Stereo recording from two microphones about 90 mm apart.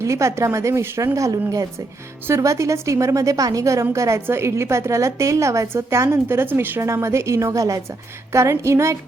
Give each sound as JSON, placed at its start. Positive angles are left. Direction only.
{"t": 0.0, "sound": "a woman's voice", "side_deg": -35}